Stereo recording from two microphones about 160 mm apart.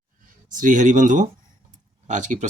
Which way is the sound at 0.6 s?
50° right (ahead or behind).